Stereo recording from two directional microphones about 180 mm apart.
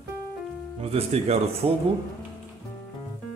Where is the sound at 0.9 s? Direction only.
35° right (ahead or behind).